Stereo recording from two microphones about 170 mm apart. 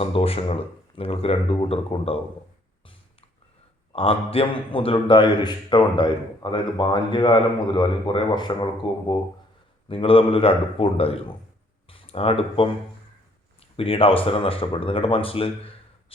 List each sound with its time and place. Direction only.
0.0 s speech: 35° left (ahead or behind)
3.9 s a man's voice: 35° left (ahead or behind)